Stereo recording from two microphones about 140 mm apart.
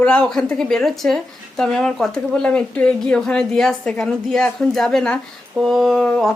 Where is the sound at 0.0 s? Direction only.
5° left (ahead or behind).